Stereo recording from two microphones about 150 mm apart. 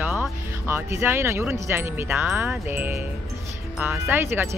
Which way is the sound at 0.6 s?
15° right (ahead or behind).